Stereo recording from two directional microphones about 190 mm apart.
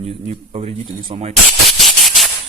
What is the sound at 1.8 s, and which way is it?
Maraca, centre (ahead or behind).